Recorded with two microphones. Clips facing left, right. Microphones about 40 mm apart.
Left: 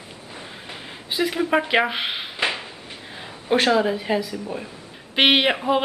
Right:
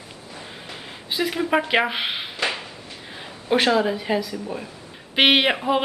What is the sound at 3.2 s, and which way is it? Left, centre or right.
Speech, centre.